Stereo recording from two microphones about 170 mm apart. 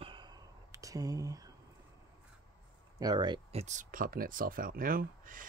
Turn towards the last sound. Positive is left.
turn(degrees=-55)  # may be behind; listen again after turning